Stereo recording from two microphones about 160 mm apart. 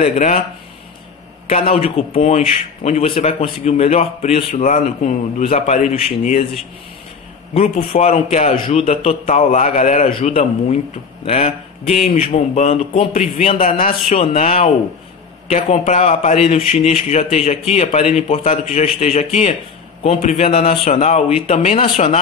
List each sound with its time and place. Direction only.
0.0 s speech: 45° left (ahead or behind)
1.7 s speech: 40° left (ahead or behind)
7.5 s speech: 40° left (ahead or behind)
10.1 s a man's voice: 40° left (ahead or behind)
13.6 s a man's voice: 55° left (ahead or behind)
14.1 s a man's voice: 45° left (ahead or behind)